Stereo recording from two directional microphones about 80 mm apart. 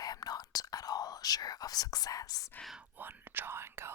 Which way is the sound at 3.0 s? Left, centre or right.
Right.